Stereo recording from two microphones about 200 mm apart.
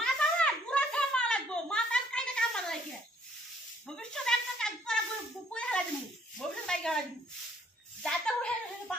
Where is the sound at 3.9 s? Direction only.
5° left (ahead or behind).